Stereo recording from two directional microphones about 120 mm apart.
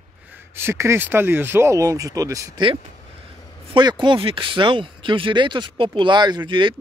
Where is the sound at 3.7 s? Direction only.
45° right (ahead or behind).